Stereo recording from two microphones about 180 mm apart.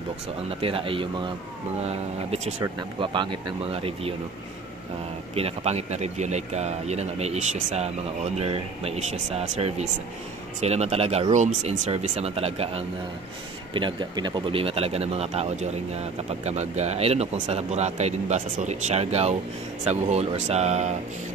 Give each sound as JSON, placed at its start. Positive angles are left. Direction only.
{"t": 0.6, "sound": "speech", "side_deg": -30}
{"t": 2.6, "sound": "speech", "side_deg": -25}
{"t": 5.3, "sound": "speech", "side_deg": -35}